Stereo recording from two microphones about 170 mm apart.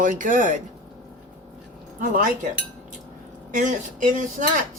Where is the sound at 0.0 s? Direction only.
50° right (ahead or behind).